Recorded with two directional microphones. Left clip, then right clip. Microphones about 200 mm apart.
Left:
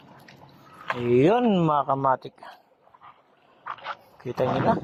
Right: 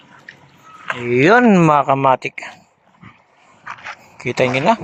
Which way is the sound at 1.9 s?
30° right (ahead or behind).